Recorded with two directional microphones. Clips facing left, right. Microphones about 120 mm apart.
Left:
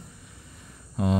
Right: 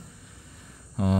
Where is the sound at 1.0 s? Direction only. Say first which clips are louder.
Even; 25° left (ahead or behind).